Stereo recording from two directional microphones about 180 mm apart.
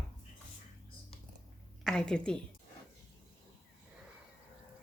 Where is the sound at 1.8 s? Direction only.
5° left (ahead or behind).